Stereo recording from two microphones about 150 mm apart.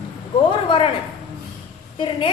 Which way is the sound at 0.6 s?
35° left (ahead or behind).